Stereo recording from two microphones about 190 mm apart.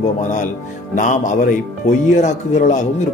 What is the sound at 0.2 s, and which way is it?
Speech, 40° left (ahead or behind).